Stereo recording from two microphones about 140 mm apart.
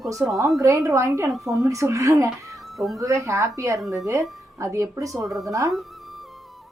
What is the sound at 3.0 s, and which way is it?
Speech, 20° right (ahead or behind).